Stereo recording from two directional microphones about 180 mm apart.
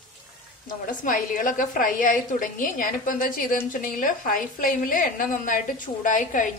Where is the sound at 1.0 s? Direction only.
50° left (ahead or behind).